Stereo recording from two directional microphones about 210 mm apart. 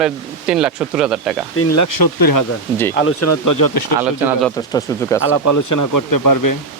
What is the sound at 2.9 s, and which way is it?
Speech, 75° left (ahead or behind).